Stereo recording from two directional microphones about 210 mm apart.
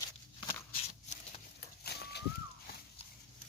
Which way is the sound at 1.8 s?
50° left (ahead or behind).